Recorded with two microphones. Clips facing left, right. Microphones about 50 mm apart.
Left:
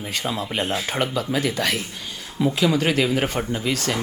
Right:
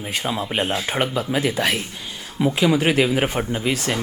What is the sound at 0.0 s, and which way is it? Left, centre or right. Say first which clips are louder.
Speech: right 2 dB; centre.